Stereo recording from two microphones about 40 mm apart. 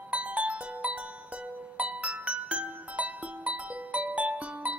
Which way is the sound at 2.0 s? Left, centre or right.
Right.